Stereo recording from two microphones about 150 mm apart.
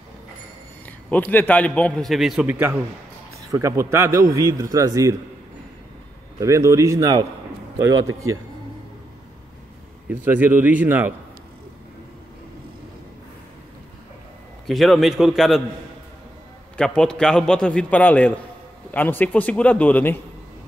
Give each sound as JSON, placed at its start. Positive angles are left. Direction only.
{"t": 0.8, "sound": "a man's voice", "side_deg": 10}
{"t": 2.4, "sound": "a man's voice", "side_deg": -10}
{"t": 6.4, "sound": "a man's voice", "side_deg": -20}
{"t": 10.0, "sound": "a man's voice", "side_deg": -10}
{"t": 14.7, "sound": "a man's voice", "side_deg": 0}
{"t": 16.7, "sound": "a man's voice", "side_deg": 5}